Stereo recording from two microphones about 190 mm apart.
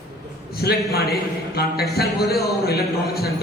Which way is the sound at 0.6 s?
60° left (ahead or behind).